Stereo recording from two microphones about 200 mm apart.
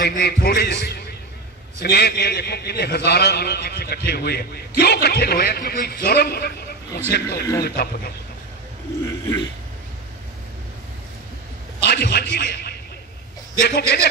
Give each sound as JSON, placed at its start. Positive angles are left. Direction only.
{"t": 0.0, "sound": "a man's voice", "side_deg": 50}
{"t": 9.0, "sound": "a sound", "side_deg": 20}
{"t": 11.9, "sound": "a man's voice", "side_deg": 55}